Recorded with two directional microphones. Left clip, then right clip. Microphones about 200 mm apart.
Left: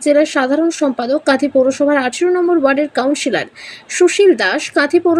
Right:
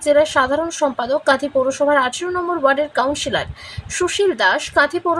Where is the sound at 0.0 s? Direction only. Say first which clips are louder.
Left 1 dB; 10° left (ahead or behind).